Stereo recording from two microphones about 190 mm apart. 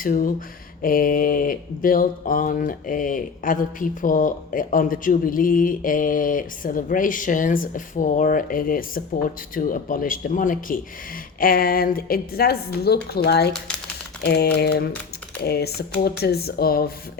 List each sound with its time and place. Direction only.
0.0 s a woman's voice: 50° left (ahead or behind)